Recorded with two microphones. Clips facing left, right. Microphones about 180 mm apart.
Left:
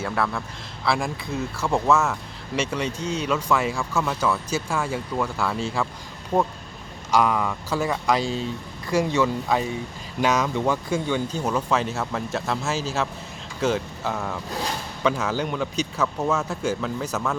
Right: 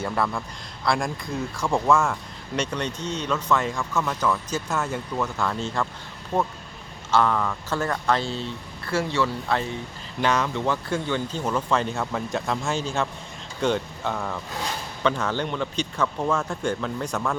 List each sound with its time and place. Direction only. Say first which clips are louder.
0.0 s speech: even; centre (ahead or behind)